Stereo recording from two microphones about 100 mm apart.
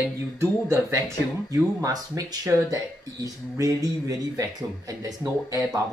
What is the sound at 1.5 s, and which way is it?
Speech, 35° right (ahead or behind).